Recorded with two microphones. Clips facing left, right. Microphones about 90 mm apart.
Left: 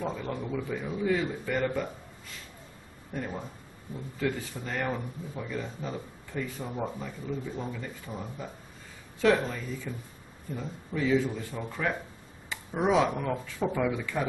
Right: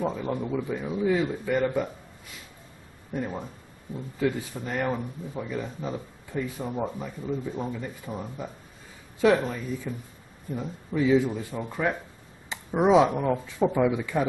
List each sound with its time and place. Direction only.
0.0 s speech: 10° right (ahead or behind)
3.1 s speech: 15° right (ahead or behind)